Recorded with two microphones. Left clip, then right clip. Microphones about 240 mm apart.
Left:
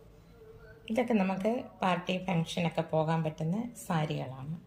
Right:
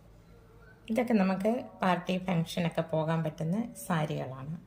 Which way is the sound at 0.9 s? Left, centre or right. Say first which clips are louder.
Right 1 dB; centre.